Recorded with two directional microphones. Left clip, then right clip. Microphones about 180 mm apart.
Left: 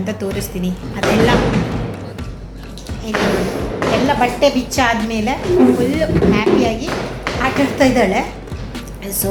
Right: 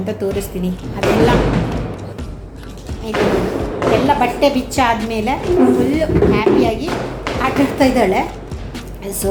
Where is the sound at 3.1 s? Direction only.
70° right (ahead or behind).